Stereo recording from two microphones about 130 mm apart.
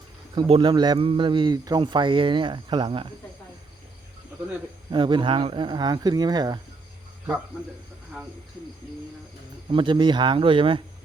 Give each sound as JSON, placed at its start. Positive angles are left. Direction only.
{"t": 0.4, "sound": "speech", "side_deg": -40}
{"t": 4.9, "sound": "speech", "side_deg": -35}
{"t": 9.6, "sound": "speech", "side_deg": -40}